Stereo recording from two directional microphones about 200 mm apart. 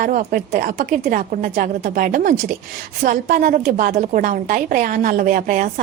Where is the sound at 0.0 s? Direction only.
45° right (ahead or behind).